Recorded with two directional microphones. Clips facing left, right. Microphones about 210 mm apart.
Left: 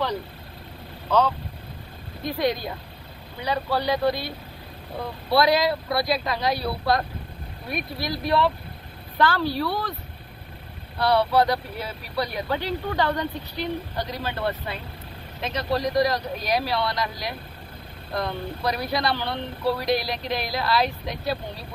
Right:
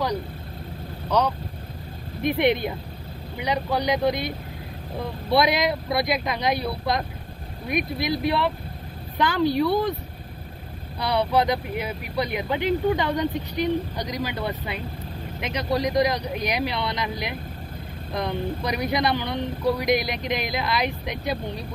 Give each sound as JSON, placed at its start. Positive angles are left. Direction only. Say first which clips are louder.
{"t": 2.2, "sound": "speech", "louder": "right 4 dB", "side_deg": -25}
{"t": 5.3, "sound": "speech", "louder": "left 1 dB", "side_deg": -20}
{"t": 11.0, "sound": "speech", "louder": "left 2 dB", "side_deg": -15}